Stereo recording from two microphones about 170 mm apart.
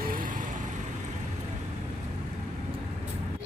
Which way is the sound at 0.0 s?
55° right (ahead or behind).